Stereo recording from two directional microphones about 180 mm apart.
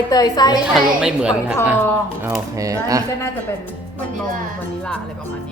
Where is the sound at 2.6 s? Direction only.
20° right (ahead or behind).